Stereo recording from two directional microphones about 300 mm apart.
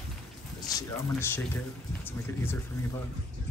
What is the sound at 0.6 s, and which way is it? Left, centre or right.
Speech, centre.